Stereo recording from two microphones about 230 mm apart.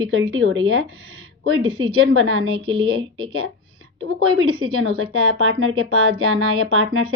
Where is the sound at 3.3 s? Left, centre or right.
Right.